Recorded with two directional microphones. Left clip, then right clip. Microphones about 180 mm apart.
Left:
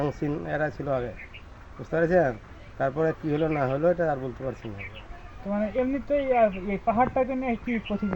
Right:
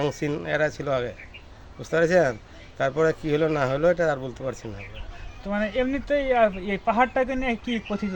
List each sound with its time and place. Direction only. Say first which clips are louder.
0.0 s speech: right 2 dB; 40° right (ahead or behind)
5.5 s speech: right 2 dB; 25° right (ahead or behind)